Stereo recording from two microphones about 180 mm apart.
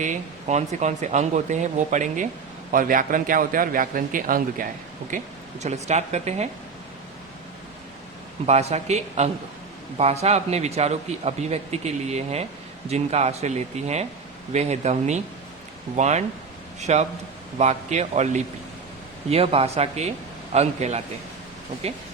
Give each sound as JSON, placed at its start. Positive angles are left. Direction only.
{"t": 0.0, "sound": "a man's voice", "side_deg": -40}
{"t": 5.1, "sound": "speech", "side_deg": -40}
{"t": 8.4, "sound": "speech", "side_deg": -40}